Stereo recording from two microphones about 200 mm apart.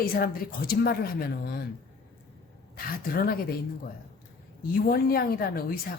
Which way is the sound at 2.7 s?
50° left (ahead or behind).